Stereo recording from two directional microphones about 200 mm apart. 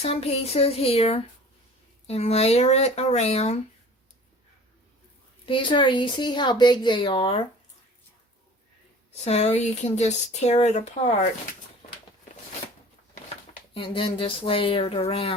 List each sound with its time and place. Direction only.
0.0 s speech: 30° left (ahead or behind)
5.5 s speech: 25° left (ahead or behind)
9.2 s speech: 35° left (ahead or behind)
13.7 s speech: 25° left (ahead or behind)